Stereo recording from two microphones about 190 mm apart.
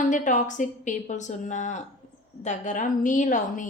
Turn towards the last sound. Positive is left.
turn(degrees=40)  # may be behind; listen again after turning